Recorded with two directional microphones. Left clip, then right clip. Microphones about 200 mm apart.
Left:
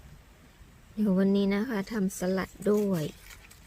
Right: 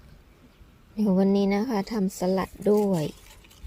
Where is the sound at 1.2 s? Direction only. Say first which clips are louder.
Right 4 dB; 15° right (ahead or behind).